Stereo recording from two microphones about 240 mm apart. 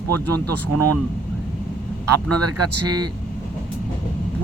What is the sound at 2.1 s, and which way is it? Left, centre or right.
Speech, right.